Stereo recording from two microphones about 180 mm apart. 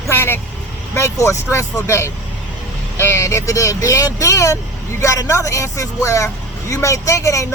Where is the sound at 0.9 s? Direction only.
15° left (ahead or behind).